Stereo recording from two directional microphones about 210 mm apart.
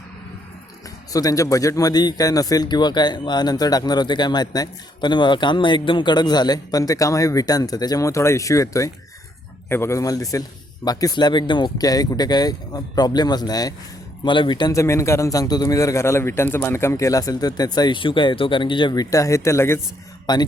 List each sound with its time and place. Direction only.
1.1 s a man's voice: 15° left (ahead or behind)